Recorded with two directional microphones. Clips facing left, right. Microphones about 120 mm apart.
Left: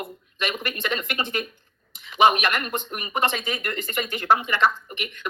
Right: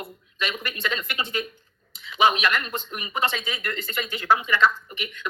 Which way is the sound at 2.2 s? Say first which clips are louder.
Left 2 dB; 50° left (ahead or behind).